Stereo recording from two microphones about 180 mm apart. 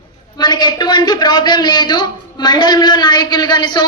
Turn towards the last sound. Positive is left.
turn(degrees=25)  # may be behind; listen again after turning